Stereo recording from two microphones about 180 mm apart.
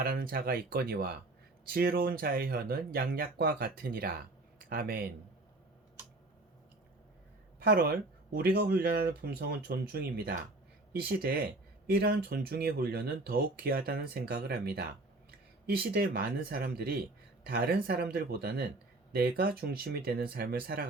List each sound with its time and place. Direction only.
0.0 s speech: 55° right (ahead or behind)
7.6 s speech: 60° right (ahead or behind)